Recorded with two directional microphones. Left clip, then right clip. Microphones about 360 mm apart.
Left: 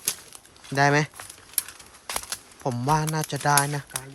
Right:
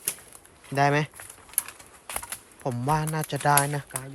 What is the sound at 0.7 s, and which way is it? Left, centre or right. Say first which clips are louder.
Speech: left 2 dB; centre.